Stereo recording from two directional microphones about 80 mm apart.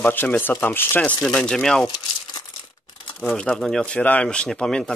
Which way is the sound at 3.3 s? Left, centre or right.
Centre.